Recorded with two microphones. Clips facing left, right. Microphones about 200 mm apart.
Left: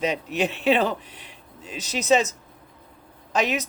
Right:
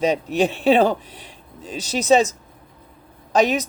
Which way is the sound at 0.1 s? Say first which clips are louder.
Right 6 dB; 35° right (ahead or behind).